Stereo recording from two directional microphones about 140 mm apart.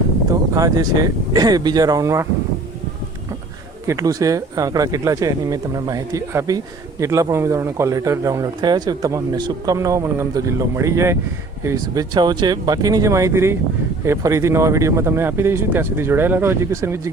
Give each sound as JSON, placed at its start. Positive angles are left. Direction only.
{"t": 0.5, "sound": "speech", "side_deg": -25}
{"t": 3.8, "sound": "speech", "side_deg": -25}
{"t": 12.1, "sound": "speech", "side_deg": -30}